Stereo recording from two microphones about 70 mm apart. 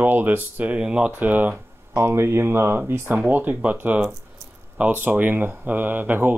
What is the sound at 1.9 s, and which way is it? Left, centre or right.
Speech, right.